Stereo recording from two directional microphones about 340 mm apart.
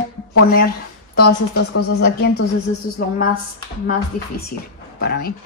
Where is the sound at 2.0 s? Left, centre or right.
Left.